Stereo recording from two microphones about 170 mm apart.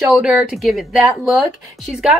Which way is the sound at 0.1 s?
5° right (ahead or behind).